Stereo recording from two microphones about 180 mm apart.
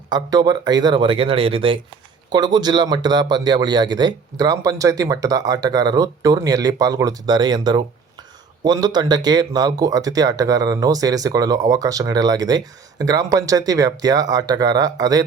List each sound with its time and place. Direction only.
0.1 s a man's voice: 20° right (ahead or behind)